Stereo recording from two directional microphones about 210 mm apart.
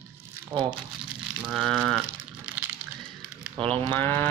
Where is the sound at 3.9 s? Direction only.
10° left (ahead or behind).